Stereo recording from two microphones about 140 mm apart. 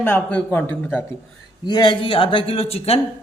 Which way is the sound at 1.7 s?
35° left (ahead or behind).